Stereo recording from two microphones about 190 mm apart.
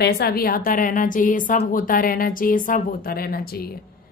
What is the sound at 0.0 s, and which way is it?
A woman's voice, 55° left (ahead or behind).